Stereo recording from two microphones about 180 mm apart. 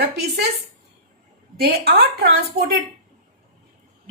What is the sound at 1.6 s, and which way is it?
A woman's voice, 60° right (ahead or behind).